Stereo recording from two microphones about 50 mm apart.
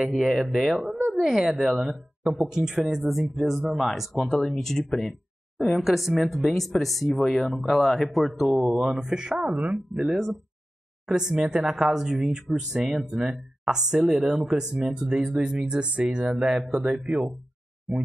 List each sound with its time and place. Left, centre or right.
0.1 s speech: centre
4.3 s speech: centre
8.6 s speech: centre
11.1 s speech: centre